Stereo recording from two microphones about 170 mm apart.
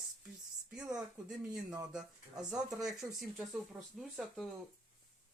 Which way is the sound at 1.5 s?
20° right (ahead or behind).